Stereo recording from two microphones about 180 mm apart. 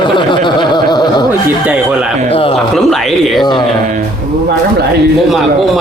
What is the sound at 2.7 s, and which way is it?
Speech, centre (ahead or behind).